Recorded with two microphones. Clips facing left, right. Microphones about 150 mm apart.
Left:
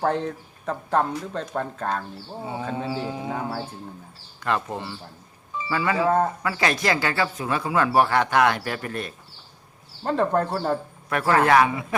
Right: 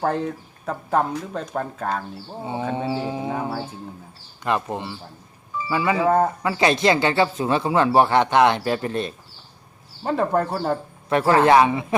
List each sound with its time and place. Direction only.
0.0 s speech: 5° right (ahead or behind)
2.4 s speech: 25° right (ahead or behind)
10.0 s speech: 5° right (ahead or behind)
11.1 s speech: 25° right (ahead or behind)